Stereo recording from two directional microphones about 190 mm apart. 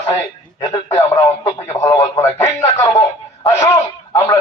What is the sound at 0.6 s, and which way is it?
Radio, 25° left (ahead or behind).